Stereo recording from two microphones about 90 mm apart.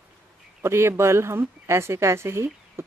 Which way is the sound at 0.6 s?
30° right (ahead or behind).